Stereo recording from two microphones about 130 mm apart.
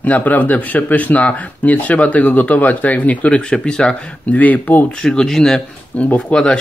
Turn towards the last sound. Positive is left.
turn(degrees=5)  # may be behind; listen again after turning